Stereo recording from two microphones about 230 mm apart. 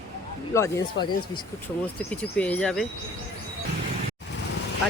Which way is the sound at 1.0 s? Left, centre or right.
Left.